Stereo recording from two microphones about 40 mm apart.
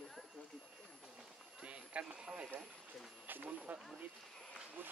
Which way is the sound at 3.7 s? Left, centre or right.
Right.